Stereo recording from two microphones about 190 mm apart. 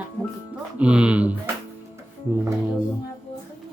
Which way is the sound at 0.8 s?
5° right (ahead or behind).